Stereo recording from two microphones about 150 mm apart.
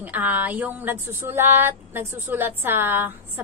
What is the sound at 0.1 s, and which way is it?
A woman's voice, 10° right (ahead or behind).